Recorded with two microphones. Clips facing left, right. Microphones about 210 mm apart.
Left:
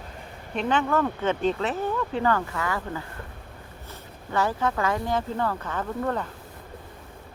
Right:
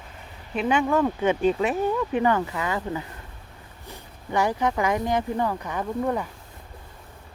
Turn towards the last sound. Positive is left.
turn(degrees=-10)  # may be behind; listen again after turning